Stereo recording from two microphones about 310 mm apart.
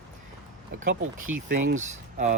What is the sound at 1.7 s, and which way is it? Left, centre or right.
Speech, right.